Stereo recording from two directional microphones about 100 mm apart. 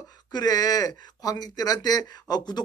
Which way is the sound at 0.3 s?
40° left (ahead or behind).